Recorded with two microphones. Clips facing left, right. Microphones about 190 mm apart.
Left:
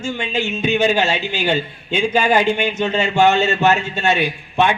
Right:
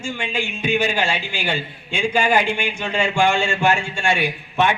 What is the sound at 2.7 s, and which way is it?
A man's voice, 25° left (ahead or behind).